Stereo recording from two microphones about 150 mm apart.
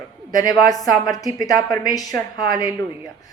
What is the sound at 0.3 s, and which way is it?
Speech, 25° left (ahead or behind).